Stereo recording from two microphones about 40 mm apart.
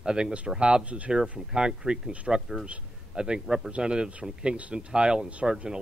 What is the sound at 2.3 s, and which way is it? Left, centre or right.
Speech, centre.